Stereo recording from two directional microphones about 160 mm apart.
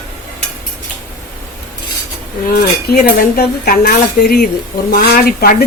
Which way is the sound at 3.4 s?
65° left (ahead or behind).